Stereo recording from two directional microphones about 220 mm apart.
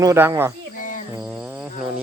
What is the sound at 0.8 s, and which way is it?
Cricket, 35° left (ahead or behind).